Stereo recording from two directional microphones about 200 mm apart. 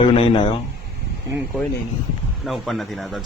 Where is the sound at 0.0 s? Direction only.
25° left (ahead or behind).